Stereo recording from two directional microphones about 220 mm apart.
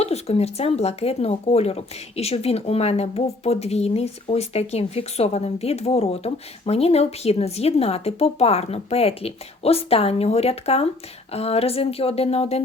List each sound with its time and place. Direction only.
0.0 s speech: 30° left (ahead or behind)